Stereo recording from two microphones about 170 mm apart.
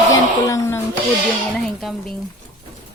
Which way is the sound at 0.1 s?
20° left (ahead or behind).